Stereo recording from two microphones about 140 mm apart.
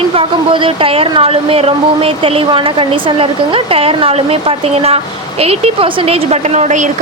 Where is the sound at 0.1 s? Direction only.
40° right (ahead or behind).